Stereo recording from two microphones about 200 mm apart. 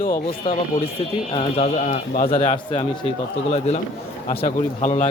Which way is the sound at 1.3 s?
35° left (ahead or behind).